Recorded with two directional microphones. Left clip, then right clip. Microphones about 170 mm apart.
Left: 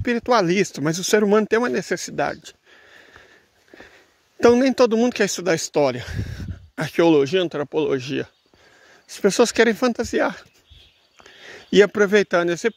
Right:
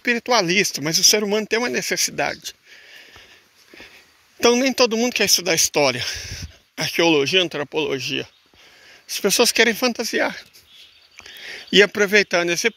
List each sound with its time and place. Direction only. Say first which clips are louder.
0.0 s speech: even; 40° left (ahead or behind); by 1.6 s 60° left (ahead or behind)
1.6 s speech: right 1 dB; 40° left (ahead or behind)
4.4 s speech: left 1 dB; 45° left (ahead or behind)
9.1 s speech: even; 45° left (ahead or behind)
11.4 s speech: right 1 dB; 35° left (ahead or behind)